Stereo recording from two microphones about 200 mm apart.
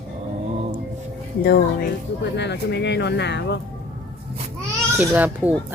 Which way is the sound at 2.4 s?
60° left (ahead or behind).